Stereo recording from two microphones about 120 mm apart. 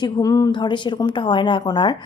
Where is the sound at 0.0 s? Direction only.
30° left (ahead or behind).